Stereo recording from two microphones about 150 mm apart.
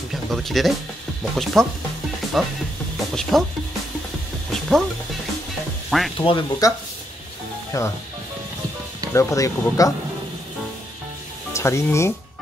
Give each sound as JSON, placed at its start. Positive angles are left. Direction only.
{"t": 0.1, "sound": "speech", "side_deg": 0}
{"t": 4.5, "sound": "music", "side_deg": 0}
{"t": 5.9, "sound": "speech", "side_deg": 0}
{"t": 6.1, "sound": "speech", "side_deg": 35}
{"t": 6.6, "sound": "speech", "side_deg": 25}
{"t": 9.1, "sound": "speech", "side_deg": 20}
{"t": 11.5, "sound": "speech", "side_deg": 20}